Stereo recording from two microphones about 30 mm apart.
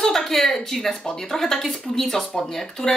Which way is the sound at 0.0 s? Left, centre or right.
Centre.